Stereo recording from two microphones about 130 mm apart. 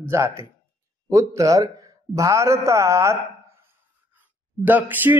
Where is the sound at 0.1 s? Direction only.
20° right (ahead or behind).